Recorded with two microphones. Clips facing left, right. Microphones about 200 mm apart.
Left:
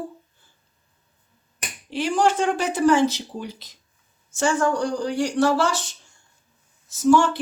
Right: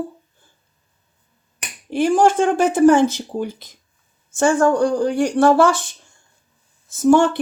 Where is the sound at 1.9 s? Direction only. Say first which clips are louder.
Right 6 dB; 50° right (ahead or behind).